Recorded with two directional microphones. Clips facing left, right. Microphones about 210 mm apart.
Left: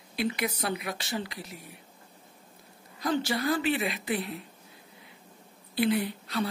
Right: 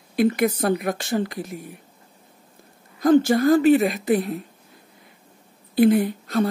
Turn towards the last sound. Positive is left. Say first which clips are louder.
# right 9 dB
turn(degrees=-50)  # may be behind; listen again after turning